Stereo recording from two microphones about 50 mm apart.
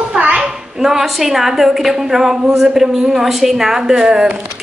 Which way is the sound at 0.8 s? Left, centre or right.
Centre.